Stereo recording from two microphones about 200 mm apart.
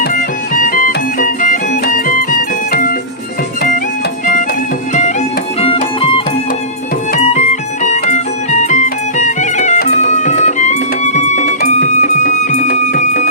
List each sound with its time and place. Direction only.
0.0 s music: 45° left (ahead or behind)
5.5 s music: 30° left (ahead or behind)
7.1 s music: 40° left (ahead or behind)